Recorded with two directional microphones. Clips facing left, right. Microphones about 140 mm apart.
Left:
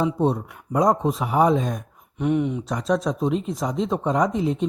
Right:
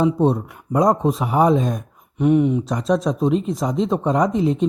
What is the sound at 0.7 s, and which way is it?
Speech, 40° right (ahead or behind).